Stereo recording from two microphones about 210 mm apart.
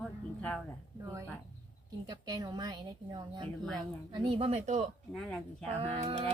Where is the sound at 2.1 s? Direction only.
20° right (ahead or behind); by 4.9 s 35° right (ahead or behind).